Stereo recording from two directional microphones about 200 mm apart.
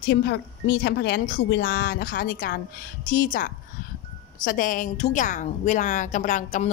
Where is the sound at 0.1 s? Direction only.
60° left (ahead or behind).